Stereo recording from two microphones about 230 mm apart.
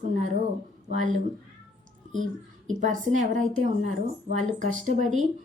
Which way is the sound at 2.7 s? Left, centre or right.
Right.